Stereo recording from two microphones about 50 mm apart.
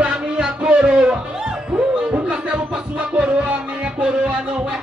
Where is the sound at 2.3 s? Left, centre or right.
Right.